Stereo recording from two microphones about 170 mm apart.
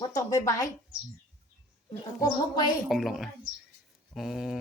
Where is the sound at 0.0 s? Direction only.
20° left (ahead or behind).